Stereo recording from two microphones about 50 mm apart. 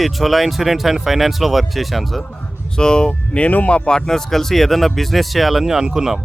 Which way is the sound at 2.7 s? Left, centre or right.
Centre.